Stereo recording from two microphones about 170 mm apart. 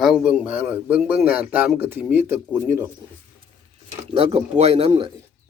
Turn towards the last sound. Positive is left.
turn(degrees=-30)  # may be behind; listen again after turning